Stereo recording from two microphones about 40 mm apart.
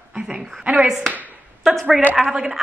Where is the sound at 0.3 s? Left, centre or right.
Right.